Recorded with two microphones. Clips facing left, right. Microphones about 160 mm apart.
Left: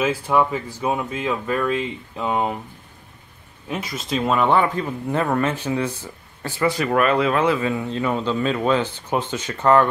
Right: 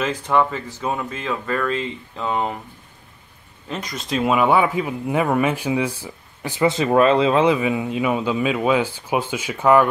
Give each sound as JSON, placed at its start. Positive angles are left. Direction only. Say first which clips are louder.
{"t": 0.0, "sound": "speech", "louder": "even", "side_deg": 10}
{"t": 3.6, "sound": "speech", "louder": "left 1 dB", "side_deg": 5}